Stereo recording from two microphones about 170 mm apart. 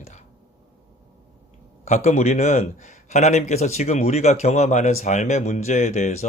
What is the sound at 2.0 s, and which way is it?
Speech, 40° left (ahead or behind).